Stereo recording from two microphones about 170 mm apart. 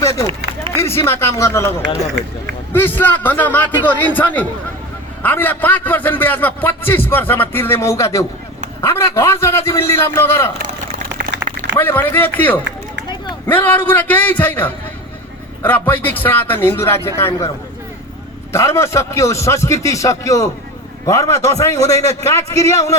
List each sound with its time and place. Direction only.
0.0 s a sound: 15° left (ahead or behind)
0.8 s a man's voice: 15° left (ahead or behind)
2.7 s a man's voice: 10° left (ahead or behind)
11.8 s a man's voice: 10° left (ahead or behind)
18.5 s a man's voice: 15° left (ahead or behind)